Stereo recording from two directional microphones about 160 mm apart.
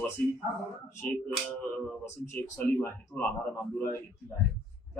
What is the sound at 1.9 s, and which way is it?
A man's voice, 10° left (ahead or behind).